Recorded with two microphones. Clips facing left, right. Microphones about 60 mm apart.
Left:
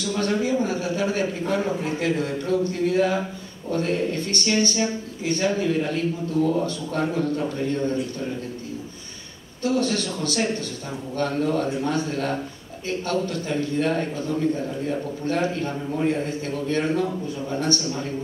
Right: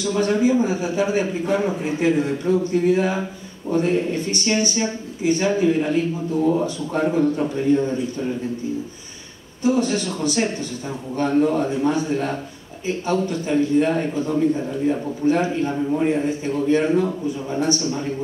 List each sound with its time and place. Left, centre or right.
0.0 s speech: centre
9.6 s speech: centre